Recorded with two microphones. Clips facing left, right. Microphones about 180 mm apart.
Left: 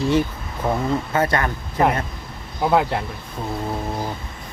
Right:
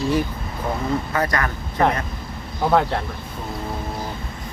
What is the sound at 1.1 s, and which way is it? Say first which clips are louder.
Speech: left 4 dB; 25° left (ahead or behind).